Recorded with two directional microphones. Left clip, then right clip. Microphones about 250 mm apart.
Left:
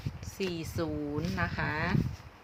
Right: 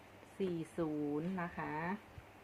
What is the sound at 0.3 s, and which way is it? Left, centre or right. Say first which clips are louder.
Speech: left 5 dB; centre.